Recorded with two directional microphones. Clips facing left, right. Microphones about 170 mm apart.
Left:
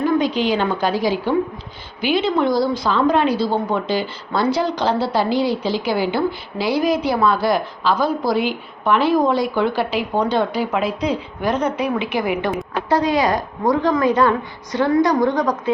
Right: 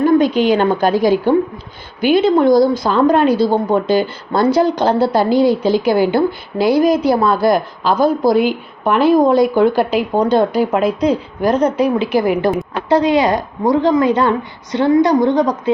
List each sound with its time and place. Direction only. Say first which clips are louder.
0.0 s a woman's voice: right 6 dB; 50° right (ahead or behind)
12.9 s a woman's voice: right 5 dB; 25° right (ahead or behind)